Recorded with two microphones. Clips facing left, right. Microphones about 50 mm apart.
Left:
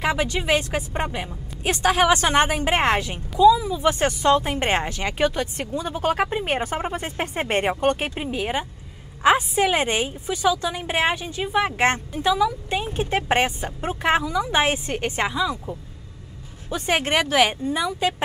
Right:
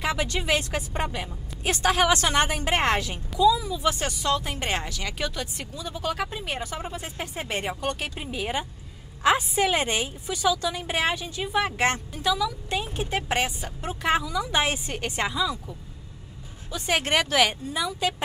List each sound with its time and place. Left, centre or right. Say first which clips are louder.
0.0 s a woman's voice: left 4 dB; left
3.8 s a woman's voice: left 7 dB; left
15.5 s speech: left 6 dB; left; by 18.1 s centre